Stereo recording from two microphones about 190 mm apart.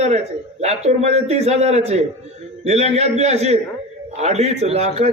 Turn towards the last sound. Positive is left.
turn(degrees=-35)  # may be behind; listen again after turning